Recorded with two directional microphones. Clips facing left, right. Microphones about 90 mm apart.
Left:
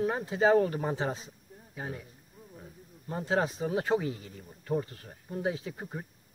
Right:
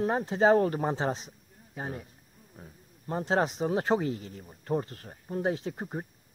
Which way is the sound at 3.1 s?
35° right (ahead or behind).